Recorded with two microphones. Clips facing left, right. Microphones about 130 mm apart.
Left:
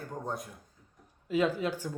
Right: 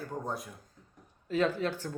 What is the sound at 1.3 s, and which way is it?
Speech, 10° left (ahead or behind).